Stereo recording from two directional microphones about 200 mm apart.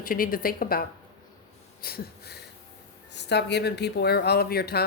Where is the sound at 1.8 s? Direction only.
50° left (ahead or behind).